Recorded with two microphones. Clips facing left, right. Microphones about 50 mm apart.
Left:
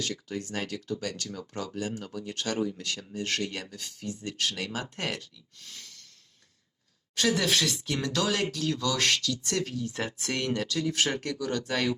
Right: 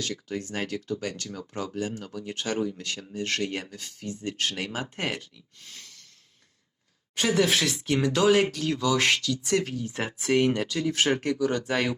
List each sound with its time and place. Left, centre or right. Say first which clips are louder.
0.1 s speech: right 2 dB; right
7.2 s speech: right 3 dB; centre
7.9 s speech: right 9 dB; centre